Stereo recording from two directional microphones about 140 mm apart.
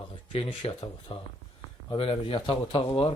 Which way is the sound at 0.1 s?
40° left (ahead or behind).